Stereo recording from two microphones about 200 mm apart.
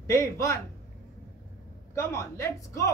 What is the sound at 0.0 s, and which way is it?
Speech, 15° left (ahead or behind).